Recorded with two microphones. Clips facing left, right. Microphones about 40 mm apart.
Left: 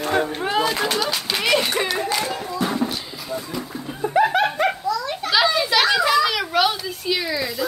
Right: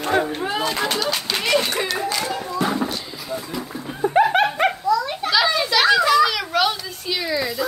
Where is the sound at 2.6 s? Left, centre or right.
Centre.